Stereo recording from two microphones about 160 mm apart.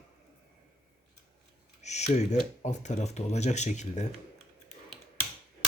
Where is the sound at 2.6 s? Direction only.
45° left (ahead or behind).